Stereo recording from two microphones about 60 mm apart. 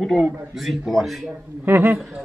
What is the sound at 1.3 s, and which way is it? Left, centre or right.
Speech, right.